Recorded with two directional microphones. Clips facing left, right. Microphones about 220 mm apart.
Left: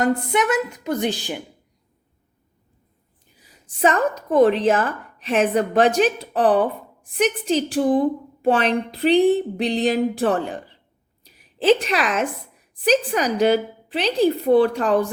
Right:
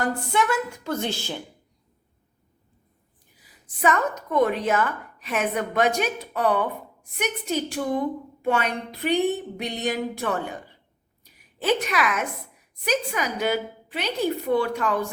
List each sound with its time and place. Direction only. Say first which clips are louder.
0.0 s a woman's voice: left 5 dB; 20° left (ahead or behind)
3.8 s a woman's voice: left 4 dB; 30° left (ahead or behind)
11.6 s a woman's voice: left 6 dB; 30° left (ahead or behind)